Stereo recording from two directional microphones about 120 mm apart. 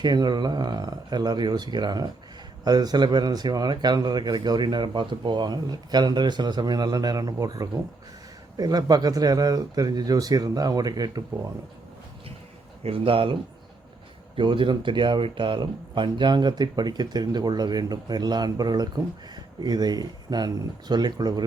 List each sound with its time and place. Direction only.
0.0 s speech: 35° right (ahead or behind)
12.8 s speech: 50° right (ahead or behind)
14.3 s speech: 45° right (ahead or behind)